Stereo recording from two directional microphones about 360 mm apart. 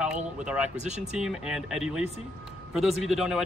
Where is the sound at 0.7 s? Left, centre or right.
Centre.